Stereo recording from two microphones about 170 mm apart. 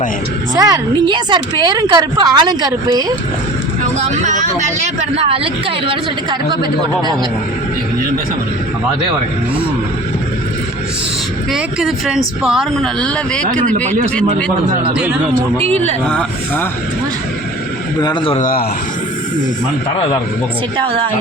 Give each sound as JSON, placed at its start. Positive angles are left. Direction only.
{"t": 0.5, "sound": "speech", "side_deg": -20}
{"t": 3.9, "sound": "speech", "side_deg": -45}
{"t": 11.5, "sound": "speech", "side_deg": 0}
{"t": 15.6, "sound": "speech", "side_deg": -35}
{"t": 16.0, "sound": "speech", "side_deg": 5}
{"t": 18.0, "sound": "a man's voice", "side_deg": 25}
{"t": 18.3, "sound": "speech", "side_deg": 55}
{"t": 20.7, "sound": "speech", "side_deg": -30}